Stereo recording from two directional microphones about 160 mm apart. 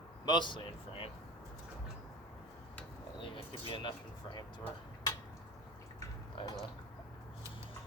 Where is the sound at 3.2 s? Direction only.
30° left (ahead or behind).